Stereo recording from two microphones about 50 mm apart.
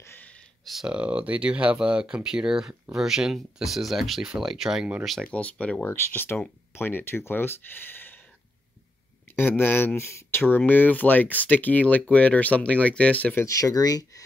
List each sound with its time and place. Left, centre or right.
0.8 s speech: right
5.3 s speech: left
5.9 s speech: left
9.3 s speech: left